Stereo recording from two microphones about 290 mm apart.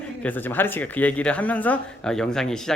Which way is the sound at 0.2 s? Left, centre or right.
Centre.